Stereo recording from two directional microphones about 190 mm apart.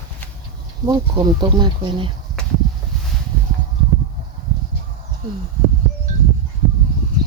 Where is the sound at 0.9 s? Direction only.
20° right (ahead or behind).